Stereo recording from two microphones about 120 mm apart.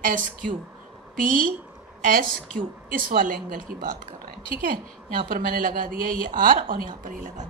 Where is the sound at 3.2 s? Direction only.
90° right.